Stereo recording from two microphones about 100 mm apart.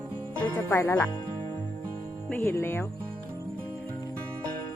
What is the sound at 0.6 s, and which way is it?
Speech, 25° left (ahead or behind).